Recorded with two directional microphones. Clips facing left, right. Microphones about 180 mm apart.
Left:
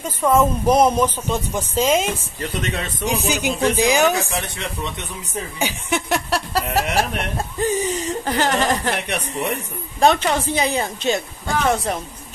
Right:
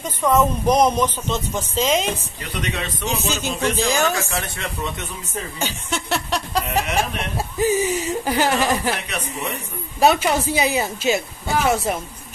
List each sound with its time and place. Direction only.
0.0 s speech: 10° left (ahead or behind)
2.6 s speech: 45° left (ahead or behind)
3.1 s speech: 15° left (ahead or behind)
5.6 s chuckle: 15° left (ahead or behind)
7.5 s speech: 5° right (ahead or behind)
9.9 s a woman's voice: 5° right (ahead or behind)